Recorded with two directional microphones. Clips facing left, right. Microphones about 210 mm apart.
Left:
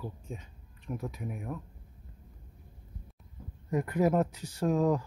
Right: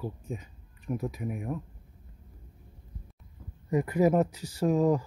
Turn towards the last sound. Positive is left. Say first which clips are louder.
# right 3 dB
turn(degrees=0)  # may be behind; listen again after turning